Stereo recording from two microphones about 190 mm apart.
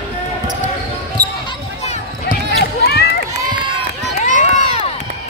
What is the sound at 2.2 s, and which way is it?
Basketball bounce, 55° left (ahead or behind).